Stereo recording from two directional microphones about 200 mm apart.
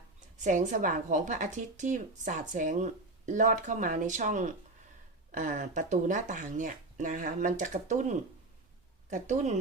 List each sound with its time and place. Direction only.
0.3 s a woman's voice: 40° right (ahead or behind)